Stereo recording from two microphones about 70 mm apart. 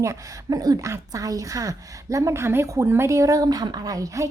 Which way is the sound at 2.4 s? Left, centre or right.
Right.